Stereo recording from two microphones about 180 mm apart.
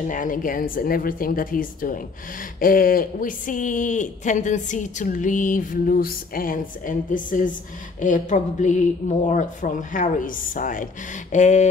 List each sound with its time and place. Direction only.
0.1 s speech: 50° left (ahead or behind)